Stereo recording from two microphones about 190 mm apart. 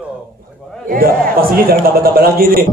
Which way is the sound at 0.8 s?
50° right (ahead or behind).